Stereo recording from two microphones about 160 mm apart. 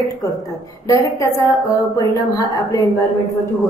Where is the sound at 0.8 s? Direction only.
20° left (ahead or behind).